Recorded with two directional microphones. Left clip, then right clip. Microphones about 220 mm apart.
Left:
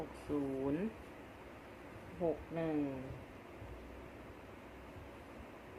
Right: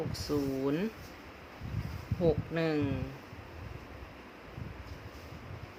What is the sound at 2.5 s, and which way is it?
Speech, 40° right (ahead or behind).